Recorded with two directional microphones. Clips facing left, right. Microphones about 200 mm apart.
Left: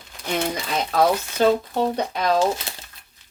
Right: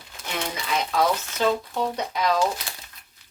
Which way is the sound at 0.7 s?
35° left (ahead or behind).